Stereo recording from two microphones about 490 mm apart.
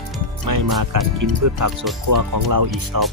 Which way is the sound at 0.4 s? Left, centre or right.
Right.